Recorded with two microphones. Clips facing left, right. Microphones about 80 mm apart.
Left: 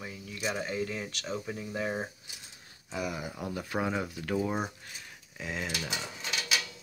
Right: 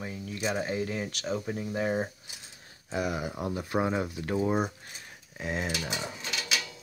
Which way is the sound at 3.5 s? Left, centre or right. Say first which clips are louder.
Right 3 dB; centre.